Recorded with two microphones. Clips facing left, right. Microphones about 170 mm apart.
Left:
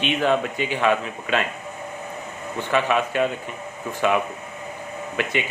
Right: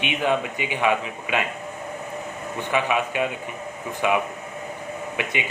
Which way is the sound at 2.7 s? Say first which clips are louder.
Left 2 dB; 15° right (ahead or behind).